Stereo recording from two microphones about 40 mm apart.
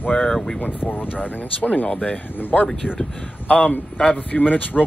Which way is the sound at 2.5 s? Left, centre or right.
Centre.